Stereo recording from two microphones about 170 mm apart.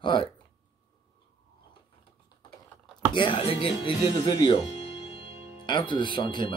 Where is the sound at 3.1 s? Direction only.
30° left (ahead or behind).